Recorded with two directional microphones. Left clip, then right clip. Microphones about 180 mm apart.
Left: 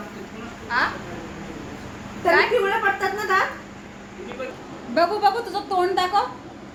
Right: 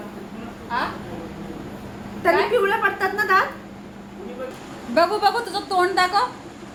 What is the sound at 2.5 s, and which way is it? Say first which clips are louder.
Speech: right 1 dB; 10° left (ahead or behind).